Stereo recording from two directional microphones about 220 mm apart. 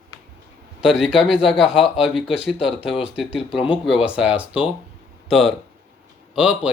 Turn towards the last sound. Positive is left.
turn(degrees=-5)  # may be behind; listen again after turning